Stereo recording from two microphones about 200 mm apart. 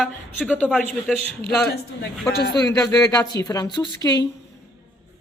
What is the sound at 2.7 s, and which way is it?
A woman's voice, 15° left (ahead or behind).